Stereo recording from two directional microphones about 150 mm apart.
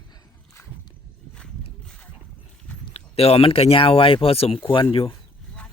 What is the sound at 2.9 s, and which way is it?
Speech, 40° left (ahead or behind).